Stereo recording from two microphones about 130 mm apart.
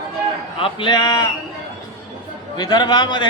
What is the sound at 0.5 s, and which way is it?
Speech, 40° left (ahead or behind).